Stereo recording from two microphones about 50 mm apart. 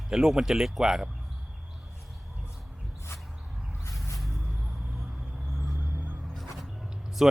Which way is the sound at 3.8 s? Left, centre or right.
Left.